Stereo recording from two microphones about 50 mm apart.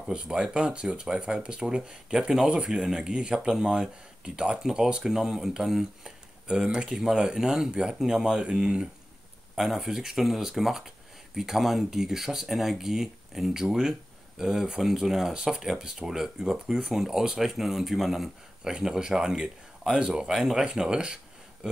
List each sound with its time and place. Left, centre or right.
0.1 s speech: centre
9.6 s speech: centre